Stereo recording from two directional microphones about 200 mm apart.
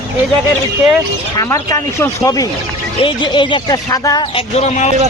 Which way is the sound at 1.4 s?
15° left (ahead or behind).